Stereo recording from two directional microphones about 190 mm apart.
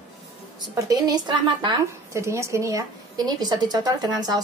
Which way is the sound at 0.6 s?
20° right (ahead or behind).